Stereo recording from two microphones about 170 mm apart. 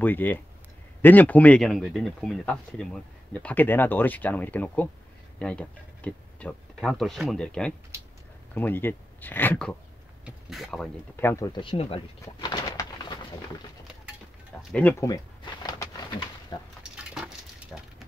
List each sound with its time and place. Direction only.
0.0 s speech: 10° left (ahead or behind)
11.1 s speech: 15° left (ahead or behind)
11.6 s speech: 35° left (ahead or behind)
14.7 s speech: 10° left (ahead or behind)
16.5 s speech: 25° left (ahead or behind)
16.8 s a sound: 5° right (ahead or behind)